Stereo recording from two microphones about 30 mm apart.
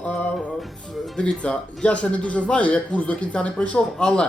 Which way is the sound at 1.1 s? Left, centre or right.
Left.